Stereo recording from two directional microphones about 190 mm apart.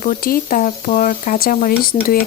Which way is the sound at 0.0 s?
45° left (ahead or behind).